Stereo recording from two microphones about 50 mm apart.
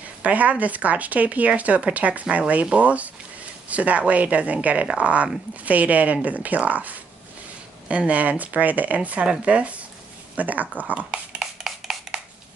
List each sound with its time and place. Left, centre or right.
0.2 s speech: right
8.1 s speech: right
11.0 s dog: centre
11.6 s a sound: centre